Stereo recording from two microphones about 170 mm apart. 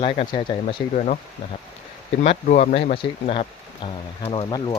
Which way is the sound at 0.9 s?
45° left (ahead or behind).